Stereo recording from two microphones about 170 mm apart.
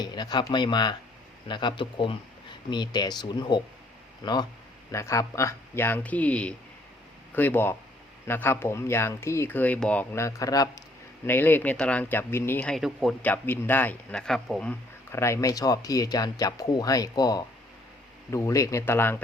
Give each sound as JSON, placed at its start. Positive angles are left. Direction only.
{"t": 0.0, "sound": "speech", "side_deg": 25}
{"t": 13.2, "sound": "speech", "side_deg": 10}